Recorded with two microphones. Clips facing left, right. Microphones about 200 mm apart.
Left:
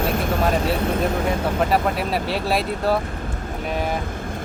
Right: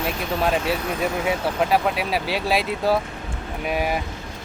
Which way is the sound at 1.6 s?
Centre (ahead or behind).